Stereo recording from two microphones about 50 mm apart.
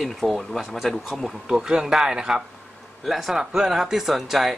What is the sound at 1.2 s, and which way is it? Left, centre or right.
A man's voice, centre.